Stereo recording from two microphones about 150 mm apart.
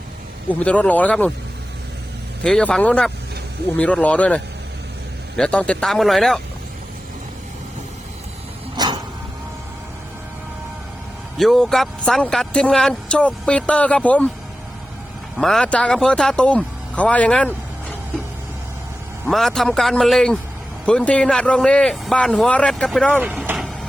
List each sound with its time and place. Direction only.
0.6 s speech: 10° left (ahead or behind)
2.4 s speech: 5° left (ahead or behind)
5.4 s speech: 5° left (ahead or behind)
8.7 s music: 30° right (ahead or behind)
11.3 s speech: centre (ahead or behind)
15.4 s speech: 5° left (ahead or behind)
19.2 s speech: 5° left (ahead or behind)
23.2 s speech: 10° right (ahead or behind)